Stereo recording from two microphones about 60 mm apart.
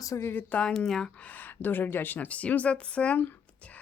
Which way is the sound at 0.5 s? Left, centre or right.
Centre.